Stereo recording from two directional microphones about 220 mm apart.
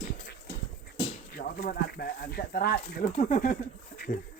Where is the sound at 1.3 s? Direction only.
40° left (ahead or behind).